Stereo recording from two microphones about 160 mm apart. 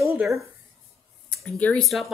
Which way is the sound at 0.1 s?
15° right (ahead or behind).